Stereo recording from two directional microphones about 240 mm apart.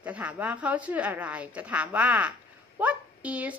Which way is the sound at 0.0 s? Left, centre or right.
Centre.